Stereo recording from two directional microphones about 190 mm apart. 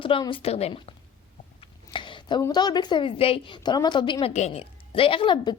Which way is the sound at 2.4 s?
20° left (ahead or behind).